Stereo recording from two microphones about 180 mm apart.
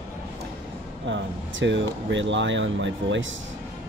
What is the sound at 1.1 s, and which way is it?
Speech, 90° right.